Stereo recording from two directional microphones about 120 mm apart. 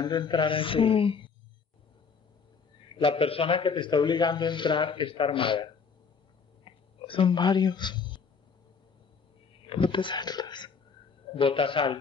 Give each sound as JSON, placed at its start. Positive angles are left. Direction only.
{"t": 0.0, "sound": "a man's voice", "side_deg": 40}
{"t": 3.0, "sound": "a man's voice", "side_deg": 50}
{"t": 6.6, "sound": "a sound", "side_deg": 45}
{"t": 9.7, "sound": "a man's voice", "side_deg": 45}